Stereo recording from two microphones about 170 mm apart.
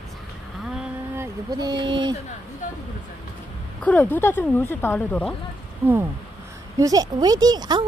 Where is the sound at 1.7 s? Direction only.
30° right (ahead or behind).